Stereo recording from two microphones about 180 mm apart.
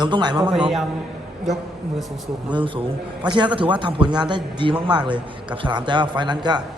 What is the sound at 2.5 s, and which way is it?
A man's voice, 30° right (ahead or behind).